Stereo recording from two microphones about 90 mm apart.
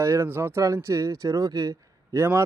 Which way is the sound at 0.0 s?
30° right (ahead or behind).